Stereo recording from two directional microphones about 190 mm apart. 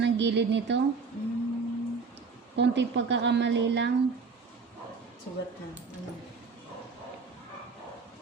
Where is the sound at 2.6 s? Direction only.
70° right (ahead or behind).